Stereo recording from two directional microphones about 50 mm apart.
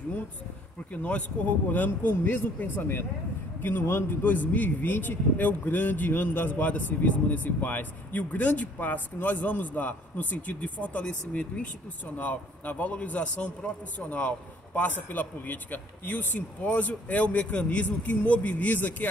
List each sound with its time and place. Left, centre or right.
0.9 s a man's voice: left
4.2 s speech: left